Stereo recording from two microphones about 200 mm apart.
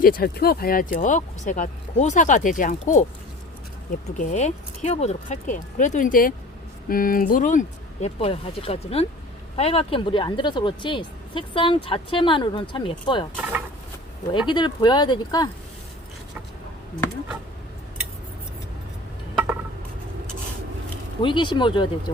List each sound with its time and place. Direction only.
0.0 s speech: 45° left (ahead or behind)
4.2 s speech: 35° left (ahead or behind)
8.0 s speech: 30° left (ahead or behind)
14.3 s speech: 20° left (ahead or behind)
21.2 s speech: 25° left (ahead or behind)